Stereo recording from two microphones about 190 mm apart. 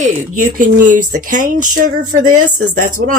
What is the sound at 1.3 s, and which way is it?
Speech, 45° right (ahead or behind).